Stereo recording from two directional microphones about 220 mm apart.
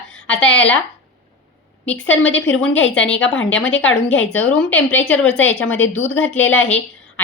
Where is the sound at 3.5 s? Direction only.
60° left (ahead or behind).